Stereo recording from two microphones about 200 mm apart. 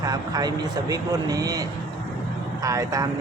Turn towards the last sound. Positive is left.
turn(degrees=-15)  # may be behind; listen again after turning